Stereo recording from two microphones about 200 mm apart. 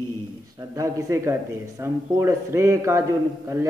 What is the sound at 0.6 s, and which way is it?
A man's voice, 15° right (ahead or behind).